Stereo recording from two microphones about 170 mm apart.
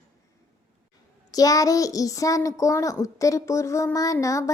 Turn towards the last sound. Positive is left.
turn(degrees=20)  # may be behind; listen again after turning